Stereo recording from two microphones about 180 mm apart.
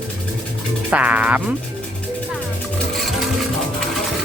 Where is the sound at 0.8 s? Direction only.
10° right (ahead or behind).